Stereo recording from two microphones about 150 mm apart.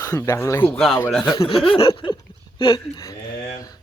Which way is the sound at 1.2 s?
30° left (ahead or behind).